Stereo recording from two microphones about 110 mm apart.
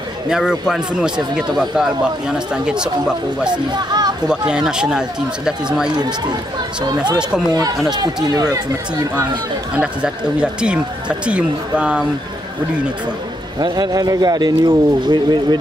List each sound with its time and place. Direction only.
0.3 s speech: 5° right (ahead or behind)
3.5 s speech: 40° right (ahead or behind)
4.3 s speech: 5° right (ahead or behind)
5.9 s speech: 40° right (ahead or behind)
7.5 s speech: 35° right (ahead or behind)
9.8 s speech: 10° right (ahead or behind)
13.6 s speech: 40° right (ahead or behind)